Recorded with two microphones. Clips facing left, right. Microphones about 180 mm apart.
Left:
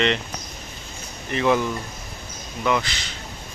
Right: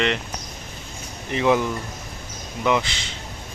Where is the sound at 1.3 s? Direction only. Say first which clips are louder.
Right 1 dB; 15° right (ahead or behind).